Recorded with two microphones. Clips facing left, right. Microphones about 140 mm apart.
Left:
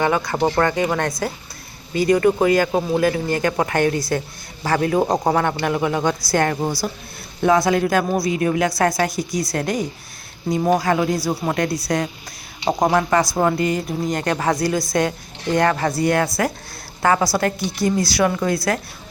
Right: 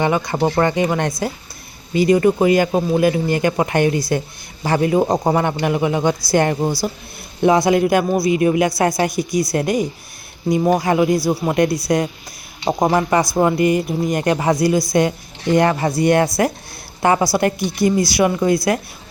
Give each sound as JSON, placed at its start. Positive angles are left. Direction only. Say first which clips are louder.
{"t": 0.0, "sound": "a woman's voice", "louder": "right 1 dB", "side_deg": -20}